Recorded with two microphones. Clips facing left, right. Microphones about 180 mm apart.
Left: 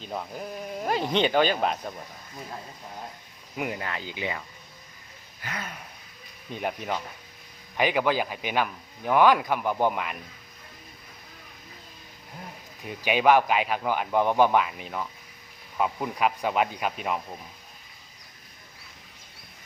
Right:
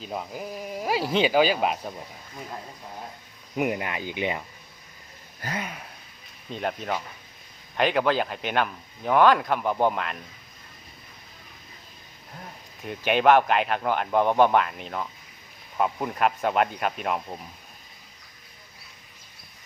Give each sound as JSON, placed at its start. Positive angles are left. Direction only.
{"t": 0.0, "sound": "speech", "side_deg": -5}
{"t": 3.6, "sound": "speech", "side_deg": -20}
{"t": 5.4, "sound": "a sound", "side_deg": -40}
{"t": 6.5, "sound": "speech", "side_deg": 10}
{"t": 13.1, "sound": "speech", "side_deg": 5}